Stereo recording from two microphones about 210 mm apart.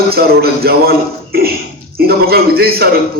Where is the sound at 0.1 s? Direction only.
45° right (ahead or behind).